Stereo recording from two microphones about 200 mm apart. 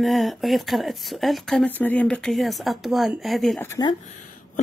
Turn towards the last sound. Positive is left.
turn(degrees=40)  # may be behind; listen again after turning